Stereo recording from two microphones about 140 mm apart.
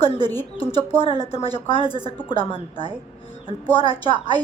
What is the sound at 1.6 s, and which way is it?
A woman's voice, 40° left (ahead or behind).